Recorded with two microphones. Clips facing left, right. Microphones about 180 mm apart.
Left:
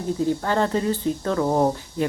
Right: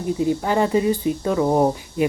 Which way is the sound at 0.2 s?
15° right (ahead or behind).